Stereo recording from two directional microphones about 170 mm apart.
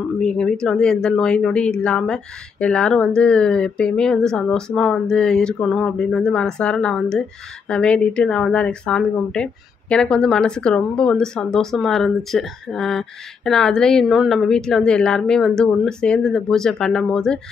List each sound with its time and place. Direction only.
0.2 s speech: 5° left (ahead or behind)